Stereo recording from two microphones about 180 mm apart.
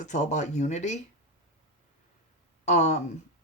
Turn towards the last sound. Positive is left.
turn(degrees=40)  # may be behind; listen again after turning